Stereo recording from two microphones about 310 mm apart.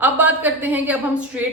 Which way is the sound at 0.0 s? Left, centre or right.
Centre.